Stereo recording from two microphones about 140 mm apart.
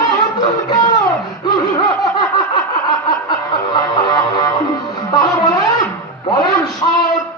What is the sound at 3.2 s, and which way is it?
Music, 30° left (ahead or behind).